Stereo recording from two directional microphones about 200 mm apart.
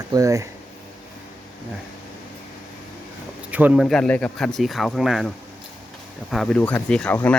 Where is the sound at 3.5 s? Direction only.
10° right (ahead or behind).